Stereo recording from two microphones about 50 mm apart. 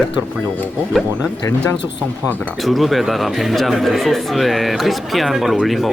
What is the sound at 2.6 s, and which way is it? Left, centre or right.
Speech, centre.